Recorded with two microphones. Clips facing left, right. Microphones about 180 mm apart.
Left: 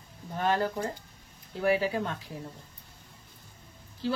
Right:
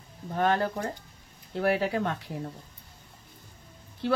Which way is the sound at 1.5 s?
65° right (ahead or behind).